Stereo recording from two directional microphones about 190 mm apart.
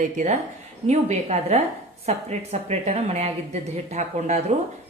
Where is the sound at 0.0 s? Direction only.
40° right (ahead or behind).